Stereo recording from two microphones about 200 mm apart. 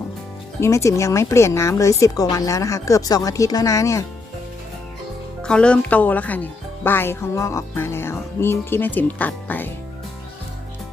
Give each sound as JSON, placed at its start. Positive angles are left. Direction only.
{"t": 0.6, "sound": "speech", "side_deg": 15}
{"t": 5.4, "sound": "speech", "side_deg": 5}